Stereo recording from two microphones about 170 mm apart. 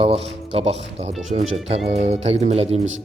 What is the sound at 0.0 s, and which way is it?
Speech, 35° right (ahead or behind).